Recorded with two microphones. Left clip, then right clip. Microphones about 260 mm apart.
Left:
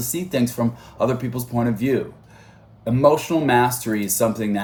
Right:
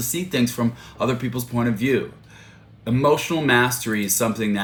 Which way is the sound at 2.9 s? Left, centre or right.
Centre.